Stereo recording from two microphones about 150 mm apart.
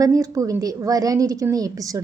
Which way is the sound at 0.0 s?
20° right (ahead or behind).